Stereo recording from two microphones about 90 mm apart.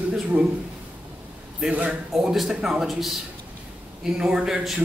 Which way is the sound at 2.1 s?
Centre (ahead or behind).